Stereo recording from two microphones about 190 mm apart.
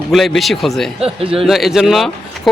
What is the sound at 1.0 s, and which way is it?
Speech, 30° right (ahead or behind).